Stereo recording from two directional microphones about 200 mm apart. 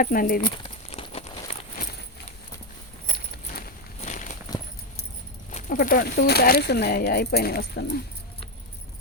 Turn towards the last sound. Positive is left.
turn(degrees=55)  # may be behind; listen again after turning